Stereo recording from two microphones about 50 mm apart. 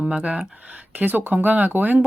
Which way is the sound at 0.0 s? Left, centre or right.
Right.